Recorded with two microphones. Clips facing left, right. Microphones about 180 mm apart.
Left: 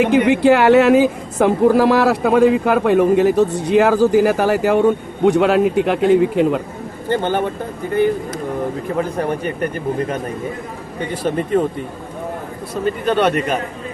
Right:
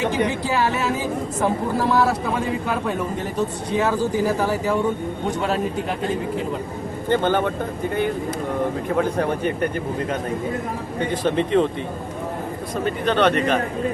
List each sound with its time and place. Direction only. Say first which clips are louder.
0.0 s a woman's voice: left 9 dB; 65° left (ahead or behind); by 6.6 s 85° left
7.1 s a man's voice: left 1 dB; 15° left (ahead or behind)
9.0 s a man's voice: left 1 dB; 10° left (ahead or behind)
11.1 s a man's voice: left 2 dB; 10° left (ahead or behind)
12.7 s a man's voice: left 4 dB; 10° left (ahead or behind)